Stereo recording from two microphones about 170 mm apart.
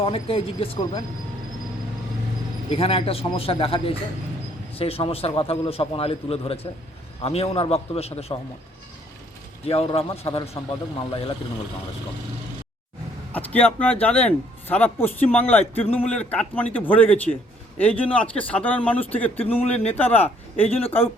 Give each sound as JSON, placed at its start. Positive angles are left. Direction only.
{"t": 0.0, "sound": "a man's voice", "side_deg": 35}
{"t": 2.6, "sound": "a man's voice", "side_deg": 35}
{"t": 9.6, "sound": "a man's voice", "side_deg": 35}
{"t": 13.3, "sound": "speech", "side_deg": 10}